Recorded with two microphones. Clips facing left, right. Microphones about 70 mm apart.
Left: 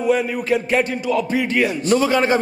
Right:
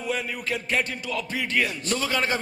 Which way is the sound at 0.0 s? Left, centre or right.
Centre.